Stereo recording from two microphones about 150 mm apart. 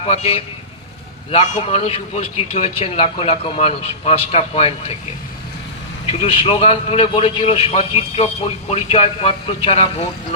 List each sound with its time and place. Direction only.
0.0 s a man's voice: 40° left (ahead or behind)
6.1 s a man's voice: 40° left (ahead or behind)